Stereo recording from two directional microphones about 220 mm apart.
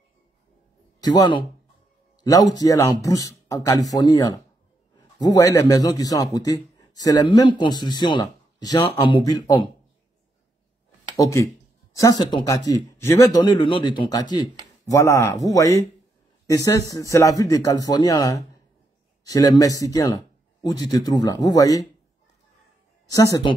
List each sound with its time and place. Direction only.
1.0 s speech: 20° left (ahead or behind)
2.6 s a man's voice: 15° left (ahead or behind)
11.1 s speech: 15° left (ahead or behind)
23.1 s speech: 15° left (ahead or behind)